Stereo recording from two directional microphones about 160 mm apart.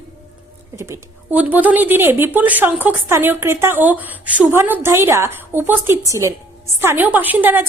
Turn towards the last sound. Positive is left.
turn(degrees=-10)  # may be behind; listen again after turning